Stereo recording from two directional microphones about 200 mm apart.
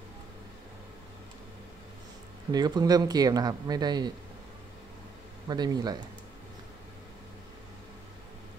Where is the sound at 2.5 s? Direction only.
20° right (ahead or behind).